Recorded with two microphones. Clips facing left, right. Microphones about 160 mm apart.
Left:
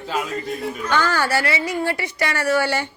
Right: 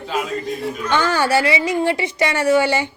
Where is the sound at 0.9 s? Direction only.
20° right (ahead or behind).